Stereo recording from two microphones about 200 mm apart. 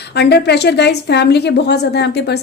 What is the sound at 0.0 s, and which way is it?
A woman's voice, 55° left (ahead or behind).